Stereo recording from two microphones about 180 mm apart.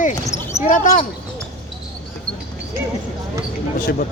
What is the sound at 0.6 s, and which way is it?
Speech, 50° left (ahead or behind).